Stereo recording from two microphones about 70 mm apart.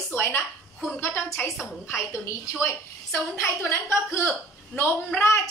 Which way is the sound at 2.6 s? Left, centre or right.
Left.